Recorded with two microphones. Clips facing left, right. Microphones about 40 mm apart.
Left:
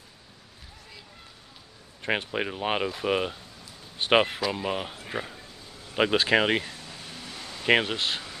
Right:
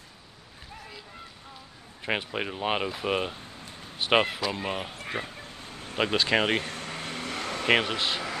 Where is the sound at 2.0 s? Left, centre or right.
Centre.